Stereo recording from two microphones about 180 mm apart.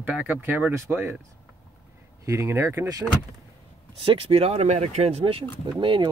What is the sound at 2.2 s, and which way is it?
Speech, 15° right (ahead or behind).